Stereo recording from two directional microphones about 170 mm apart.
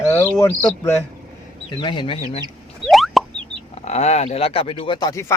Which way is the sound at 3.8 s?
40° left (ahead or behind).